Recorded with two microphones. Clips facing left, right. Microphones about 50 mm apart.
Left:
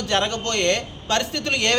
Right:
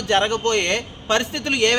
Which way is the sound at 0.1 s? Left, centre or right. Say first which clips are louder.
Right 5 dB; centre.